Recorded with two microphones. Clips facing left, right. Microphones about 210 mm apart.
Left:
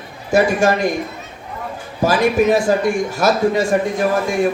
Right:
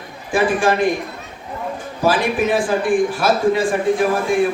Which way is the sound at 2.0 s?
40° left (ahead or behind).